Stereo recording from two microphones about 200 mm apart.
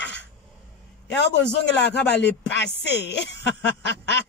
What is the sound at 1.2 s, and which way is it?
Speech, 60° left (ahead or behind).